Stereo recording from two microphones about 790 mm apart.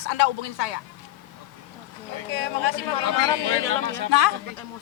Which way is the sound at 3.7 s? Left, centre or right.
Centre.